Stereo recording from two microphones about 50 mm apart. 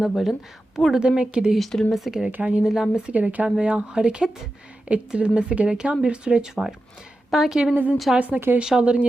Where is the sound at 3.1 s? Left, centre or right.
Right.